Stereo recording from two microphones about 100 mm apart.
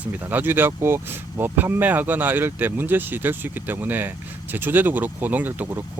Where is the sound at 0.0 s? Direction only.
20° right (ahead or behind).